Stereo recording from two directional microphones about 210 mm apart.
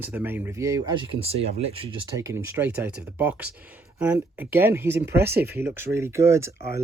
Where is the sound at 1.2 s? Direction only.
30° right (ahead or behind).